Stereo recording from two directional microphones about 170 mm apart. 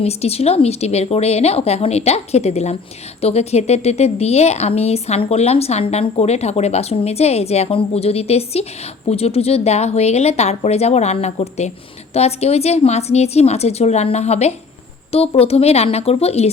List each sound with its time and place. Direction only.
0.0 s speech: 35° left (ahead or behind)